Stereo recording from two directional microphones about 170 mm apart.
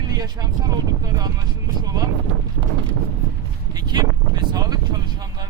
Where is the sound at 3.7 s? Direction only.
25° right (ahead or behind).